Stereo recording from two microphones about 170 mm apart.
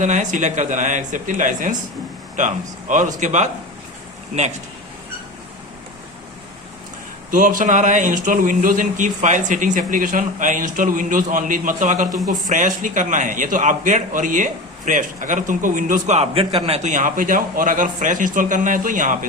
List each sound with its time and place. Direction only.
0.0 s a man's voice: 45° right (ahead or behind)
7.3 s a man's voice: 50° right (ahead or behind)